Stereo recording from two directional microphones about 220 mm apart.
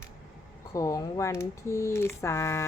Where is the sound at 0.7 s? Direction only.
15° left (ahead or behind).